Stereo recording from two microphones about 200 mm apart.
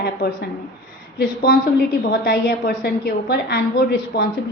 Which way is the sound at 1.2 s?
50° left (ahead or behind).